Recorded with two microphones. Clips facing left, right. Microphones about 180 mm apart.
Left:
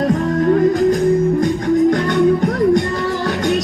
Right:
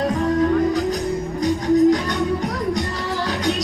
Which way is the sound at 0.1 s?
50° left (ahead or behind).